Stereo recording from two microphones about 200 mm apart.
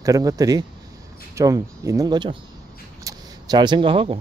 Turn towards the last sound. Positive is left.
turn(degrees=-25)  # may be behind; listen again after turning